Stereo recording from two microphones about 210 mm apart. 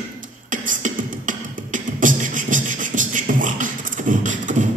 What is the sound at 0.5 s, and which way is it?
Beatboxing, 40° right (ahead or behind).